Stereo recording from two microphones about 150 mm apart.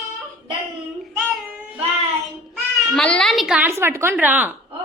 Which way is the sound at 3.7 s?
20° right (ahead or behind).